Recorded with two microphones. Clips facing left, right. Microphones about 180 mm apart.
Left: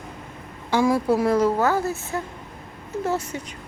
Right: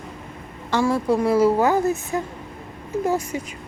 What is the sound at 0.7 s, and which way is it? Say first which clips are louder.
Speech: even; 10° left (ahead or behind).